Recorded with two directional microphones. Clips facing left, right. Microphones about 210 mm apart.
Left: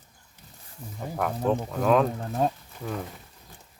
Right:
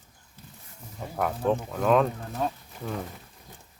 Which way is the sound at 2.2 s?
35° left (ahead or behind).